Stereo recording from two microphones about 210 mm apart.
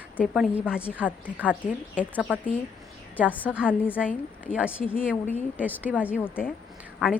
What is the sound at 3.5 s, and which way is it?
A woman's voice, 5° right (ahead or behind).